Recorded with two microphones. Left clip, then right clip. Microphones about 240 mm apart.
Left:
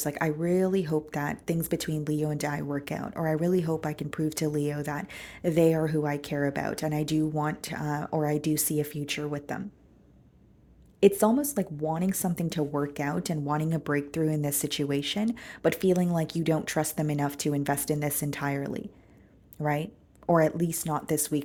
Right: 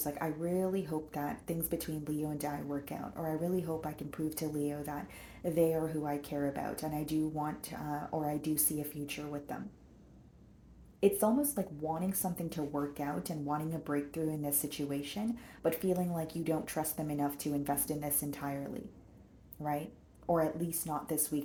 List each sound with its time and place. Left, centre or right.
0.0 s speech: left
11.0 s speech: left